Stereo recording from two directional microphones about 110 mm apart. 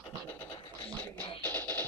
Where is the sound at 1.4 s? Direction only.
15° left (ahead or behind).